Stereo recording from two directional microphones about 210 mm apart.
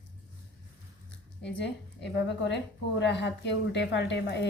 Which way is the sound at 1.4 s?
55° left (ahead or behind).